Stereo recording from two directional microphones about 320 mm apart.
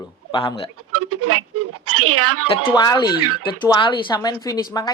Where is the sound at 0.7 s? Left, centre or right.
Right.